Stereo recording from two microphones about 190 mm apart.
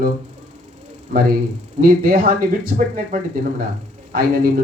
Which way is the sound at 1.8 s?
50° right (ahead or behind).